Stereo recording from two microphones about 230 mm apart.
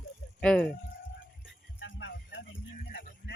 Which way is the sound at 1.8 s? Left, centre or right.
Left.